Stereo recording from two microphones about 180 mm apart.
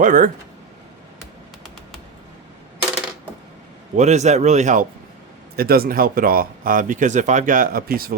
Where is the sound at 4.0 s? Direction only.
40° right (ahead or behind).